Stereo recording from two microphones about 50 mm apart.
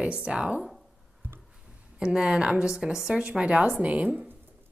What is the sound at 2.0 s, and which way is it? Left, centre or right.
A woman's voice, centre.